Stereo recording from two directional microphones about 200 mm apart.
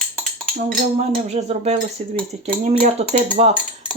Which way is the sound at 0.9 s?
30° right (ahead or behind).